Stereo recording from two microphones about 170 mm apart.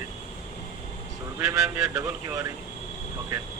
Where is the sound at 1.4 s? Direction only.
20° right (ahead or behind).